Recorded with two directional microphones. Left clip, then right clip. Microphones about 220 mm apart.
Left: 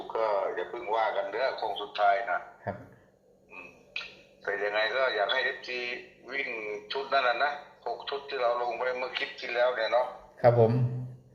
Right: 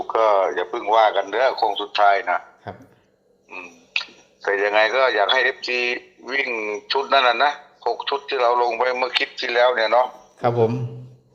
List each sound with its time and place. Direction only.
0.1 s speech: 40° right (ahead or behind)
3.5 s frog: 40° right (ahead or behind)
4.4 s a man's voice: 40° right (ahead or behind)